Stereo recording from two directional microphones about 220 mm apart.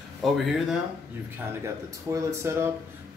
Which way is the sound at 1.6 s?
15° right (ahead or behind).